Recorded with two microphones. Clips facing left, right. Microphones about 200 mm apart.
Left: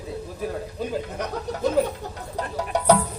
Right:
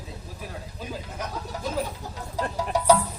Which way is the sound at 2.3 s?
60° left (ahead or behind).